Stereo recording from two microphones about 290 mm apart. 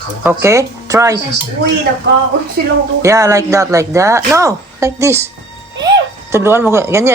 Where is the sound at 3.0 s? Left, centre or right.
Centre.